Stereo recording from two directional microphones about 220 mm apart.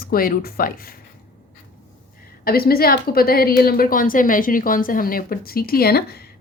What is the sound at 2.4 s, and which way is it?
A woman's voice, 45° left (ahead or behind).